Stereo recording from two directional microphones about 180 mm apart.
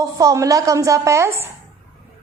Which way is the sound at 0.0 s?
15° right (ahead or behind).